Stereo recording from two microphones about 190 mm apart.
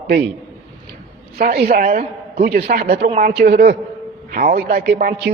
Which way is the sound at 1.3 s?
50° right (ahead or behind).